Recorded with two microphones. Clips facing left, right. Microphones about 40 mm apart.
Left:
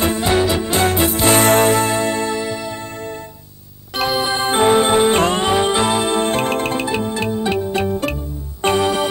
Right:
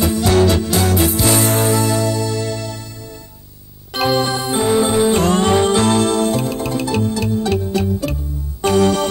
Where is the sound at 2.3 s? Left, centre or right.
Centre.